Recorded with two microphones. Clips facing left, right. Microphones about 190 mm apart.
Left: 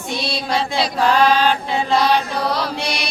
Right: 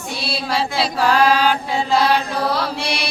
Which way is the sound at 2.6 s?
5° right (ahead or behind).